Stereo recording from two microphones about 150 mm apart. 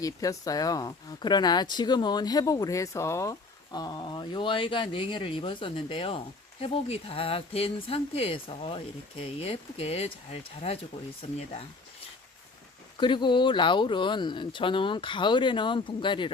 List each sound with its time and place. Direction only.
0.0 s speech: 25° left (ahead or behind); by 11.6 s 45° left (ahead or behind)
13.0 s speech: 30° left (ahead or behind)